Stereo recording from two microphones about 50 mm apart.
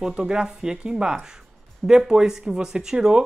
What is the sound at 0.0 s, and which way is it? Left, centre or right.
Speech, centre.